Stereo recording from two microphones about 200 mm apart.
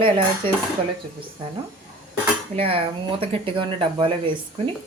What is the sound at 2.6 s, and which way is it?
Speech, 25° right (ahead or behind).